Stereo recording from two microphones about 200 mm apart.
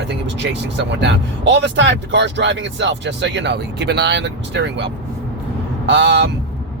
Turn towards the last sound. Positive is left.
turn(degrees=-60)  # may be behind; listen again after turning